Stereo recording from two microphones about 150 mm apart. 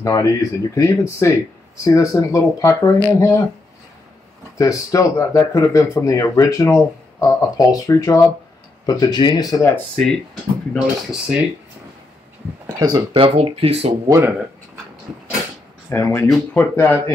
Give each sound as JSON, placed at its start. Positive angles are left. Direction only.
{"t": 0.0, "sound": "speech", "side_deg": 25}
{"t": 4.6, "sound": "speech", "side_deg": 20}
{"t": 9.9, "sound": "speech", "side_deg": 5}
{"t": 12.6, "sound": "speech", "side_deg": -25}
{"t": 14.0, "sound": "speech", "side_deg": -20}
{"t": 15.9, "sound": "speech", "side_deg": 20}